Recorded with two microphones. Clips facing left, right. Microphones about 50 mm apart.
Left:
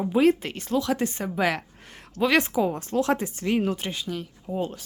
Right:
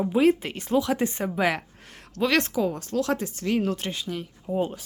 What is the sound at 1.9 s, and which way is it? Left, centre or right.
Speech, centre.